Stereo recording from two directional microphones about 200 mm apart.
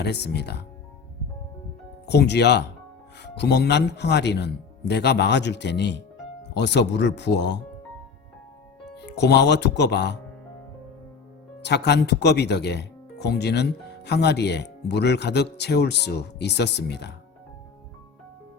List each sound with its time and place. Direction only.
0.0 s speech: 55° left (ahead or behind)
2.0 s speech: 55° left (ahead or behind)
9.0 s speech: 55° left (ahead or behind)
11.6 s speech: 60° left (ahead or behind)